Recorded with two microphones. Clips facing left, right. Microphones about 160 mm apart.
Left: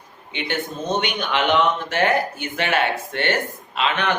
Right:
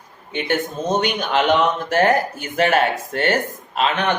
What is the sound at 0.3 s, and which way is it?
Speech, 45° right (ahead or behind).